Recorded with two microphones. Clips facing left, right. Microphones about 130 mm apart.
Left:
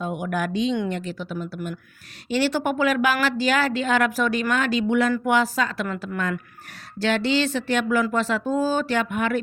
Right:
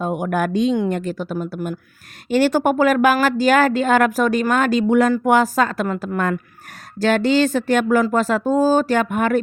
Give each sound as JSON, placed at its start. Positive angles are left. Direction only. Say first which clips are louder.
{"t": 0.0, "sound": "speech", "louder": "right 5 dB", "side_deg": -45}